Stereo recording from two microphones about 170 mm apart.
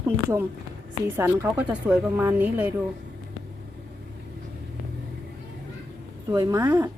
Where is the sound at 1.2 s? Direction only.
15° right (ahead or behind).